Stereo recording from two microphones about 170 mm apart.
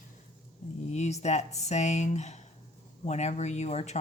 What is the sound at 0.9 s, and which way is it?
A woman's voice, 40° left (ahead or behind).